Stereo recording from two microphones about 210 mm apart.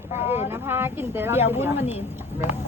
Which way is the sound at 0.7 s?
10° right (ahead or behind).